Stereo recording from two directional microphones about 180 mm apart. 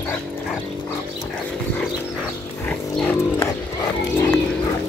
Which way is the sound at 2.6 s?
5° left (ahead or behind).